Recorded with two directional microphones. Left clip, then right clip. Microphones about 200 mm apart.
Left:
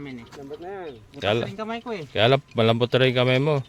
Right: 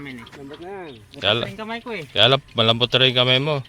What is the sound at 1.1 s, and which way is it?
Speech, 20° left (ahead or behind).